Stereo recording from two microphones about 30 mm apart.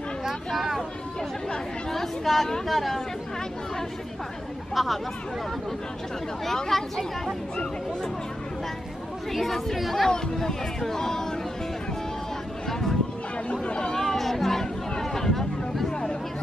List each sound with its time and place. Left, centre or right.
1.9 s speech: centre
4.7 s speech: centre
6.4 s speech: centre
9.3 s speech: centre
10.0 s speech: left
12.6 s a sound: centre
13.5 s hubbub: left
13.9 s a sound: centre